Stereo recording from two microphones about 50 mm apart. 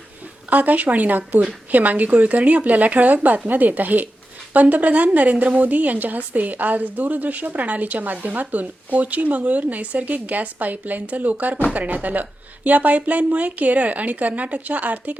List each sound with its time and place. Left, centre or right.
0.5 s speech: right